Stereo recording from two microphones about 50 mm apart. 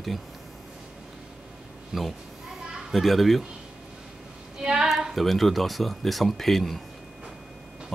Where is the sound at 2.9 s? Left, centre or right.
Centre.